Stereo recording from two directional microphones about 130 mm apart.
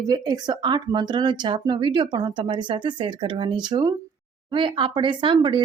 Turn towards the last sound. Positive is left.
turn(degrees=-40)  # may be behind; listen again after turning